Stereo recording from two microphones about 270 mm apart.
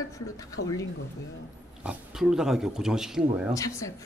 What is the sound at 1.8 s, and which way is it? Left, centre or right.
Speech, centre.